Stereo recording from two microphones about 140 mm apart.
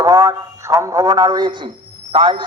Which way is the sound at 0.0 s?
20° right (ahead or behind).